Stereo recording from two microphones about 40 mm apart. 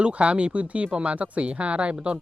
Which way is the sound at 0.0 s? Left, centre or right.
Right.